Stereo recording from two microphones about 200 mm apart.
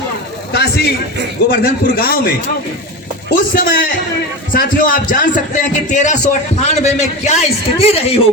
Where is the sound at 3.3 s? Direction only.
45° left (ahead or behind).